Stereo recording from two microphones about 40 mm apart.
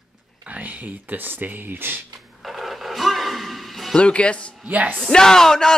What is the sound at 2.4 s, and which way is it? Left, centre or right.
Music, centre.